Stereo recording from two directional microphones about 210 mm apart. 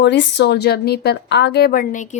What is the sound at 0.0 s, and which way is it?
A woman's voice, 55° left (ahead or behind).